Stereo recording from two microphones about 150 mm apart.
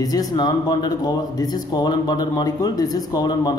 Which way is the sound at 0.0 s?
25° left (ahead or behind).